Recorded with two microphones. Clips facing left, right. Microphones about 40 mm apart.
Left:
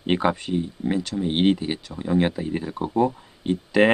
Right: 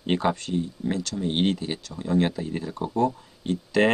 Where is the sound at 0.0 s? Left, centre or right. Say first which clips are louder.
Left 2 dB; centre.